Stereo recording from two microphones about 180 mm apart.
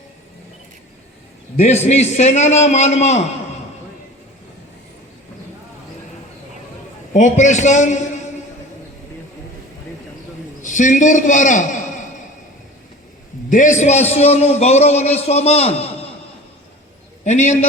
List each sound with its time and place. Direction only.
1.5 s a man's voice: 40° left (ahead or behind)
7.1 s a man's voice: 45° left (ahead or behind)
10.6 s a man's voice: 45° left (ahead or behind)
13.5 s a man's voice: 45° left (ahead or behind)
17.2 s a man's voice: 40° left (ahead or behind)